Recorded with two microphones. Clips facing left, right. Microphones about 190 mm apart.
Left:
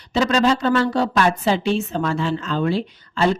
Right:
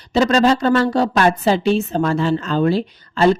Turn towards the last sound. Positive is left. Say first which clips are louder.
# right 5 dB
turn(degrees=-40)  # may be behind; listen again after turning